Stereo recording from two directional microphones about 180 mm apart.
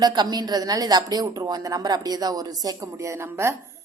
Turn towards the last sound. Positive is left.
turn(degrees=-15)  # may be behind; listen again after turning